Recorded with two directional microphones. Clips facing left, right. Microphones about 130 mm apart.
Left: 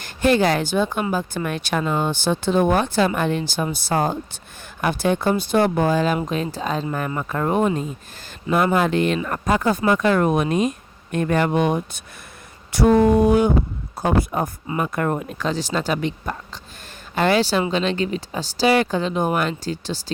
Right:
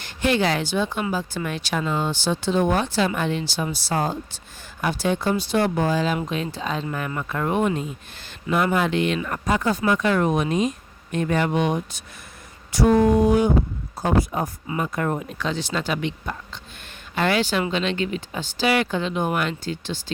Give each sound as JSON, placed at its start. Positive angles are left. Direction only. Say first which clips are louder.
{"t": 0.0, "sound": "speech", "louder": "left 4 dB", "side_deg": 45}
{"t": 6.1, "sound": "speech", "louder": "left 3 dB", "side_deg": 40}
{"t": 12.7, "sound": "speech", "louder": "left 2 dB", "side_deg": 60}